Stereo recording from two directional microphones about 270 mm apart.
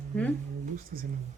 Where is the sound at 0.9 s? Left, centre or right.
Right.